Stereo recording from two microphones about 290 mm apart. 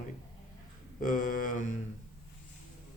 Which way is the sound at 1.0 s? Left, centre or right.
Left.